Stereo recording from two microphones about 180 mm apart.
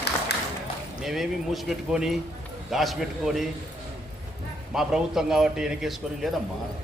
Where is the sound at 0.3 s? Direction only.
65° left (ahead or behind).